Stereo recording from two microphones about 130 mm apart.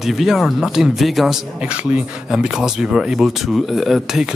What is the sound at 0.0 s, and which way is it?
Speech, centre (ahead or behind).